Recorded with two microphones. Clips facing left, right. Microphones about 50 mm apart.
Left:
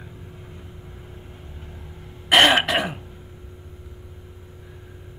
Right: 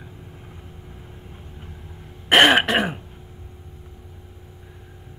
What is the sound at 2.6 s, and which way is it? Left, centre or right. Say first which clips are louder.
Throat clearing: right 2 dB; right.